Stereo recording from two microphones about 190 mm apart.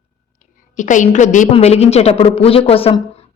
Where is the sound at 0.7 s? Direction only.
40° left (ahead or behind).